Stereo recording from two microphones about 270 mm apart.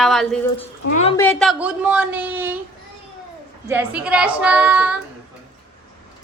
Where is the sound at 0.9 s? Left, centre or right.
Left.